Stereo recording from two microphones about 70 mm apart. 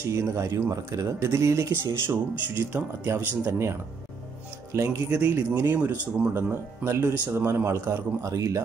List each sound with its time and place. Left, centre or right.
0.0 s speech: right
4.7 s speech: right
5.1 s a man's voice: right